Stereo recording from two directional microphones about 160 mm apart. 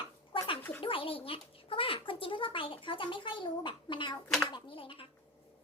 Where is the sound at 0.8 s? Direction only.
35° left (ahead or behind).